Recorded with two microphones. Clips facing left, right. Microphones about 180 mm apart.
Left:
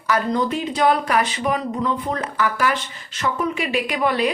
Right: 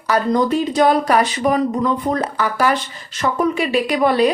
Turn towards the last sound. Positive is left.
turn(degrees=-35)  # may be behind; listen again after turning